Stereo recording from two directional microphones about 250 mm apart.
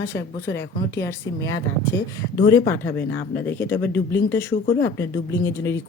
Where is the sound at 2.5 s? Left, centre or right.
Centre.